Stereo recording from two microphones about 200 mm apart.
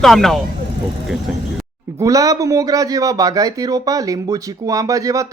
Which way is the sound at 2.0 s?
15° right (ahead or behind).